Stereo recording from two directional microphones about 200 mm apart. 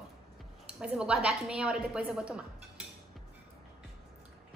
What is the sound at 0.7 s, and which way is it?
A woman's voice, 5° right (ahead or behind).